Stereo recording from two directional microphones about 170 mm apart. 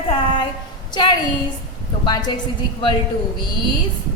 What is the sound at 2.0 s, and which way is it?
Speech, 25° left (ahead or behind).